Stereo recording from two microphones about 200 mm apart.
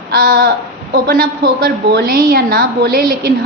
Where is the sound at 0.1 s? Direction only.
50° right (ahead or behind).